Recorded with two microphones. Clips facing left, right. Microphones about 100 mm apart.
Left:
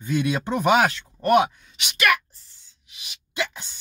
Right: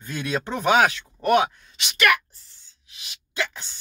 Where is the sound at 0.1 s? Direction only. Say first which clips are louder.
Left 4 dB; 10° left (ahead or behind).